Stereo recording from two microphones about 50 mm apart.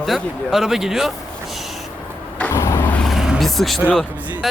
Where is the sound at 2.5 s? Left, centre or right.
Left.